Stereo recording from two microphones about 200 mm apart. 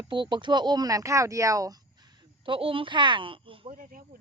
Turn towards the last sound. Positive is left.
turn(degrees=-45)  # may be behind; listen again after turning